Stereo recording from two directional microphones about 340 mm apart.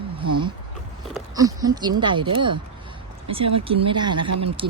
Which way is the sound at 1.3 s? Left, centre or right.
Centre.